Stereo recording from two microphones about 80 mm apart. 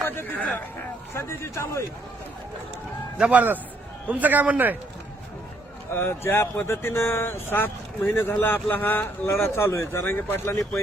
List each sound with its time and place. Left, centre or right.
0.1 s speech: left
1.1 s speech: left
3.2 s a man's voice: centre
5.9 s speech: left